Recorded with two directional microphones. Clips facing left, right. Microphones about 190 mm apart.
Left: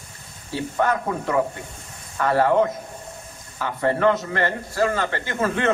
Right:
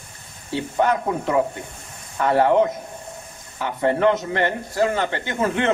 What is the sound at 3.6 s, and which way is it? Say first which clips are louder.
Speech: right 1 dB; 20° right (ahead or behind).